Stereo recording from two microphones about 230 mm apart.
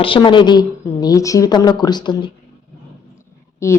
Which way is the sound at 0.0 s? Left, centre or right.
Left.